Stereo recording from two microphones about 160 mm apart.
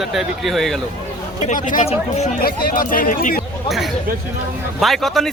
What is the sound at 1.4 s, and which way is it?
Speech, 55° left (ahead or behind).